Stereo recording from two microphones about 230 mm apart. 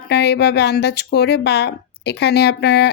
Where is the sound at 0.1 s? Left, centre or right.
Left.